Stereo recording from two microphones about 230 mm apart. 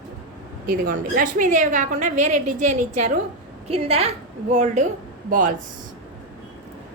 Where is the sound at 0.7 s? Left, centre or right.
Right.